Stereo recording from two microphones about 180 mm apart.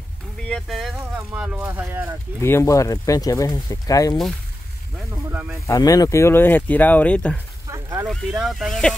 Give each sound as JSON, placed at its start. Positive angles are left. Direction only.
{"t": 0.4, "sound": "speech", "side_deg": 5}
{"t": 2.4, "sound": "speech", "side_deg": 15}
{"t": 5.1, "sound": "speech", "side_deg": -10}
{"t": 5.7, "sound": "speech", "side_deg": 20}
{"t": 7.6, "sound": "a sound", "side_deg": -20}
{"t": 8.1, "sound": "speech", "side_deg": 0}